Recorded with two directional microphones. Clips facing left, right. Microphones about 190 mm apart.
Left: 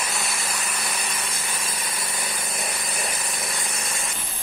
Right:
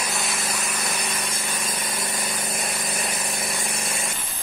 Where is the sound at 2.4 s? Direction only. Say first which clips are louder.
Right 2 dB; 25° right (ahead or behind).